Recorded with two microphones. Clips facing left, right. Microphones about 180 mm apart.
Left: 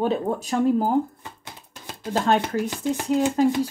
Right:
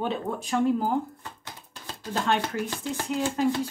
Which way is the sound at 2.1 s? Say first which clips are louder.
Left 5 dB; 40° left (ahead or behind).